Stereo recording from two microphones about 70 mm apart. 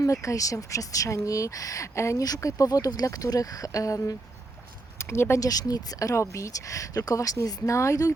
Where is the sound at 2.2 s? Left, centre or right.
Left.